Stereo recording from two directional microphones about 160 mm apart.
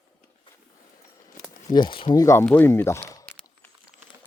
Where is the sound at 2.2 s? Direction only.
15° left (ahead or behind).